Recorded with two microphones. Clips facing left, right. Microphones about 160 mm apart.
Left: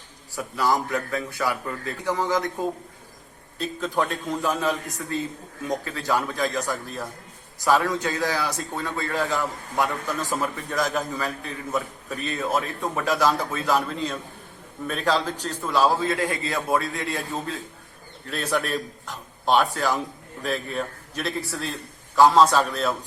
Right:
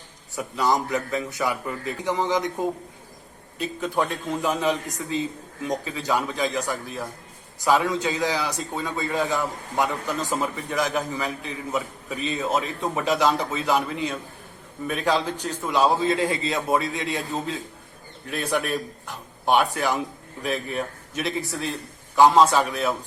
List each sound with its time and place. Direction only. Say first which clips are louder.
0.3 s a man's voice: right 1 dB; 20° right (ahead or behind)